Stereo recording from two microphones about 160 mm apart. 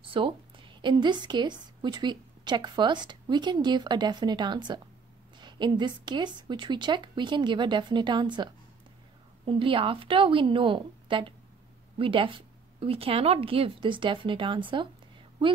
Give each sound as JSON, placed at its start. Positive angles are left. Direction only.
{"t": 0.0, "sound": "a woman's voice", "side_deg": -35}
{"t": 9.5, "sound": "speech", "side_deg": -35}